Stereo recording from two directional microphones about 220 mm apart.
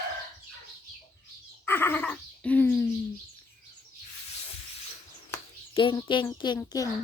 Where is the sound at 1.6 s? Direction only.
10° left (ahead or behind).